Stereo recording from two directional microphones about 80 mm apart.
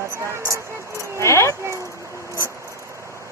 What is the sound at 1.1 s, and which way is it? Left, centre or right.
Keys jangling, left.